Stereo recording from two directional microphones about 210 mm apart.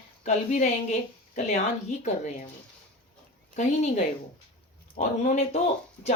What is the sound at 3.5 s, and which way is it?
Speech, 35° left (ahead or behind).